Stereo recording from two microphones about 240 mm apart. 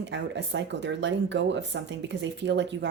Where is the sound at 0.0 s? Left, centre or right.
Right.